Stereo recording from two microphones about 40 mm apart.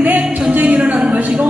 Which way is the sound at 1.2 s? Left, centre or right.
Right.